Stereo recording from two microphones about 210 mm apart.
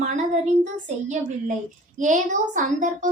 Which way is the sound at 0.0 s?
35° right (ahead or behind).